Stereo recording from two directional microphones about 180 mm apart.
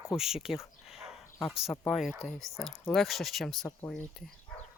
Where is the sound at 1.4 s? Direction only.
Centre (ahead or behind).